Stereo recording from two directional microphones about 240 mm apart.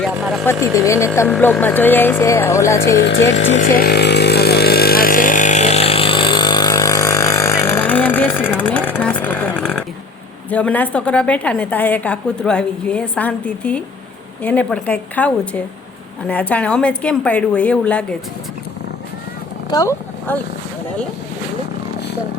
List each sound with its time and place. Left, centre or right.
0.0 s a woman's voice: centre
0.6 s speech: centre
3.5 s chainsaw: left; by 9.8 s centre
10.5 s a woman's voice: centre
19.7 s speech: centre